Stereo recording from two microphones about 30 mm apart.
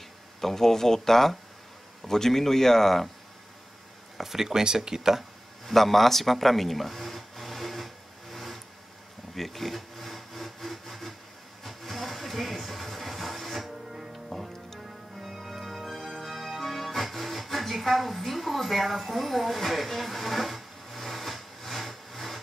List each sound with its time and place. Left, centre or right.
0.4 s speech: centre
4.2 s speech: centre
5.7 s a sound: centre
9.3 s wood: centre
11.6 s music: centre
15.2 s organ: centre
16.0 s music: centre